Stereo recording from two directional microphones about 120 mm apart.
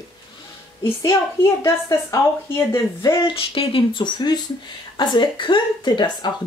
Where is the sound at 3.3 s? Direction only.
45° left (ahead or behind).